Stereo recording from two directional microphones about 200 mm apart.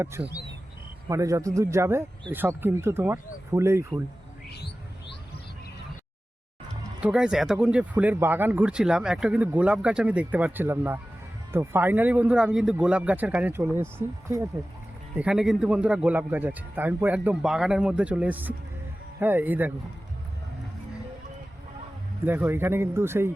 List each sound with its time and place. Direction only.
0.2 s speech: 10° right (ahead or behind)
4.5 s music: 55° left (ahead or behind)
7.0 s speech: 5° right (ahead or behind)
15.2 s speech: 5° right (ahead or behind)
22.2 s speech: 10° right (ahead or behind)